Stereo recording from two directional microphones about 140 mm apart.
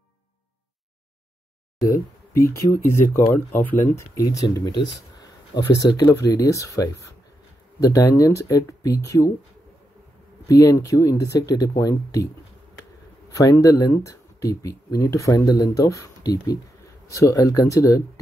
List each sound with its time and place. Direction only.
1.8 s a sound: 20° left (ahead or behind)
2.9 s speech: 20° left (ahead or behind)
10.5 s speech: 25° left (ahead or behind)
13.4 s speech: 25° left (ahead or behind)